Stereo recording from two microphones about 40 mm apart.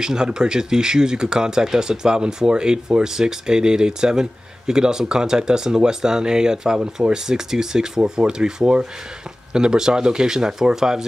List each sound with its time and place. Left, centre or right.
0.0 s speech: centre